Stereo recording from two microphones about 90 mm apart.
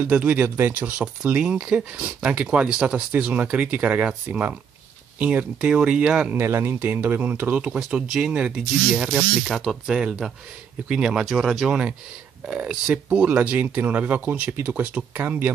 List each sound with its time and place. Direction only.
0.1 s speech: 15° right (ahead or behind)
6.3 s speech: 25° right (ahead or behind)
7.7 s speech: 10° right (ahead or behind)
9.5 s speech: centre (ahead or behind)
12.4 s speech: 10° right (ahead or behind)